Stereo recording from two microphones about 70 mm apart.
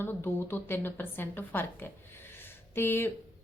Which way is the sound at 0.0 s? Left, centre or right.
Left.